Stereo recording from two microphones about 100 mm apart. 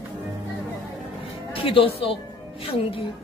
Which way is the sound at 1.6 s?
70° left (ahead or behind).